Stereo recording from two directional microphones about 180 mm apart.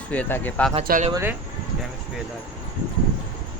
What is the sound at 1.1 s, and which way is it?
Speech, 15° right (ahead or behind).